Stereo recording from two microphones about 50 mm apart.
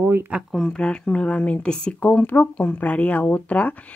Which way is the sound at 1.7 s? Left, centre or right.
Centre.